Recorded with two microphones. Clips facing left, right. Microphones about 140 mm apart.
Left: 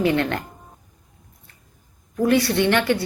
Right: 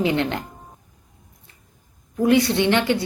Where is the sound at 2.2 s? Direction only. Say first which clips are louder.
Right 1 dB; 20° right (ahead or behind).